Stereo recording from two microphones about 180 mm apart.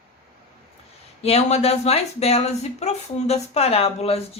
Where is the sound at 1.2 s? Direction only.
35° left (ahead or behind).